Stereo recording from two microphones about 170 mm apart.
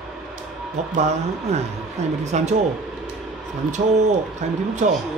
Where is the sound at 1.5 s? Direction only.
40° right (ahead or behind).